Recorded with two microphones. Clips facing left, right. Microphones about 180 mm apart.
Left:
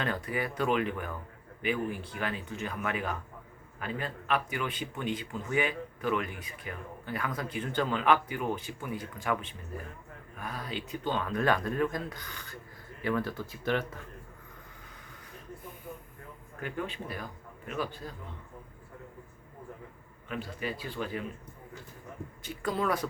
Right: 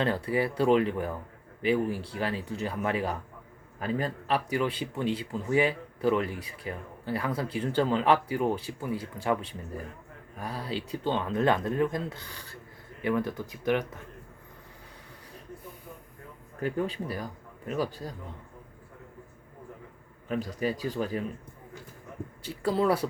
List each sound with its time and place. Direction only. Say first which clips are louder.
0.0 s speech: right 6 dB; 30° right (ahead or behind)
13.0 s speech: right 3 dB; 20° right (ahead or behind)
16.6 s speech: right 6 dB; 35° right (ahead or behind)
20.2 s speech: right 6 dB; 40° right (ahead or behind)
22.4 s speech: right 5 dB; 30° right (ahead or behind)